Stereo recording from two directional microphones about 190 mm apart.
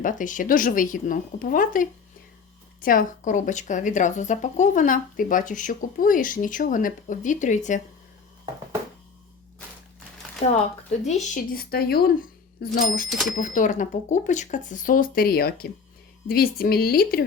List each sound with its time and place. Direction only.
0.0 s a woman's voice: 40° left (ahead or behind)
11.0 s speech: 35° left (ahead or behind)
11.5 s a woman's voice: 55° left (ahead or behind)
13.1 s speech: centre (ahead or behind)
13.3 s a woman's voice: 45° left (ahead or behind)